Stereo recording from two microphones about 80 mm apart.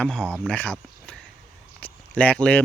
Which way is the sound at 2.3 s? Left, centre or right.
Centre.